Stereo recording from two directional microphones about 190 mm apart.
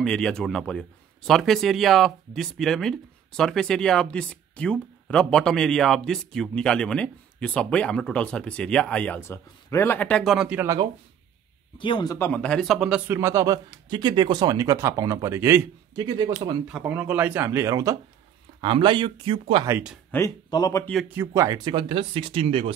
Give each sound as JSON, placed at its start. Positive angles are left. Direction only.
{"t": 0.0, "sound": "a man's voice", "side_deg": 5}
{"t": 11.8, "sound": "speech", "side_deg": 25}
{"t": 12.3, "sound": "speech", "side_deg": 5}
{"t": 16.6, "sound": "speech", "side_deg": -5}
{"t": 19.6, "sound": "speech", "side_deg": -10}
{"t": 20.1, "sound": "speech", "side_deg": 15}
{"t": 20.8, "sound": "a man's voice", "side_deg": 0}
{"t": 21.1, "sound": "speech", "side_deg": -15}